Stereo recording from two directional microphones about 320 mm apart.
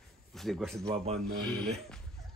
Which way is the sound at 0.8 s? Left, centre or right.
Centre.